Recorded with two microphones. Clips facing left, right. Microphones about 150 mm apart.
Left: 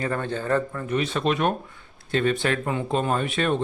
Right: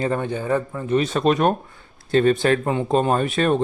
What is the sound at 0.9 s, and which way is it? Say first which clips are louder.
Speech: right 7 dB; 40° right (ahead or behind).